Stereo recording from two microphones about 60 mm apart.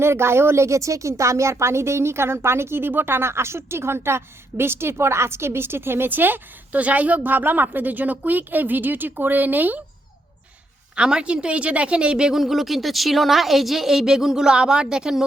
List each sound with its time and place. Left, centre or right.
0.0 s a woman's voice: right
10.9 s a woman's voice: centre
12.4 s speech: centre